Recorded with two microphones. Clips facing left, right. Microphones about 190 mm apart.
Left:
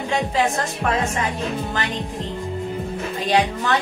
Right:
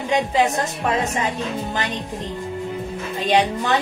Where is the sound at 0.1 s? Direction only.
20° right (ahead or behind).